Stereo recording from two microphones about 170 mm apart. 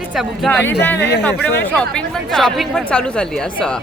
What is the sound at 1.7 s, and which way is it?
A woman's voice, 5° left (ahead or behind).